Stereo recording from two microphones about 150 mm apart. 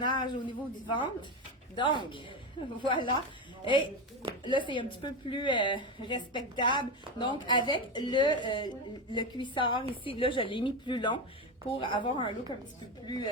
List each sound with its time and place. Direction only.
0.0 s a woman's voice: 30° left (ahead or behind)